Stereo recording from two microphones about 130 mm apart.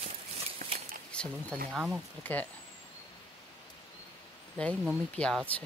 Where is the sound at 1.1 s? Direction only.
5° left (ahead or behind).